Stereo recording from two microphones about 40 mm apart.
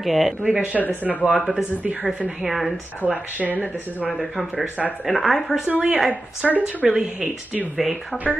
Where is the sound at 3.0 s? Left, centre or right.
Left.